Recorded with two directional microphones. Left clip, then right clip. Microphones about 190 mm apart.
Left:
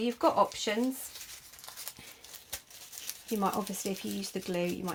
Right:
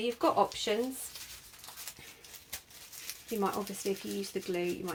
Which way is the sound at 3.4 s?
50° left (ahead or behind).